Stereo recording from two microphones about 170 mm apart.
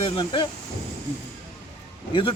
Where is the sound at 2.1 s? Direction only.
30° left (ahead or behind).